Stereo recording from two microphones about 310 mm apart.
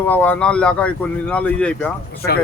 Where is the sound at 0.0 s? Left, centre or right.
Centre.